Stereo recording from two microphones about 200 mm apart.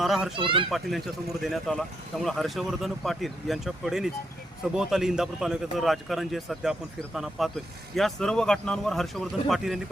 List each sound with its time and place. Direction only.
0.0 s speech: centre (ahead or behind)
0.3 s speech: 25° right (ahead or behind)
0.7 s speech: centre (ahead or behind)